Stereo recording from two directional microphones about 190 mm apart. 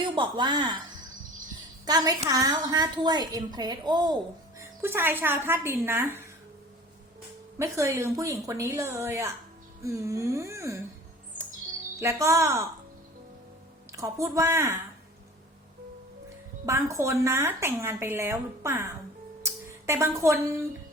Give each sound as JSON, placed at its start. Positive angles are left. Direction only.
{"t": 0.0, "sound": "a woman's voice", "side_deg": -25}
{"t": 1.8, "sound": "a woman's voice", "side_deg": -20}
{"t": 7.6, "sound": "speech", "side_deg": -15}
{"t": 11.9, "sound": "speech", "side_deg": -15}
{"t": 13.9, "sound": "speech", "side_deg": -15}
{"t": 16.6, "sound": "speech", "side_deg": -15}